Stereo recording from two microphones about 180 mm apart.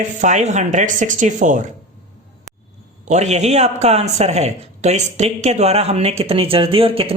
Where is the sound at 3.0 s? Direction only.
40° right (ahead or behind).